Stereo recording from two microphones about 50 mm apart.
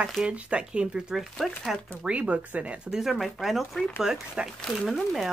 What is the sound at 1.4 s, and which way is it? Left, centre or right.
Speech, centre.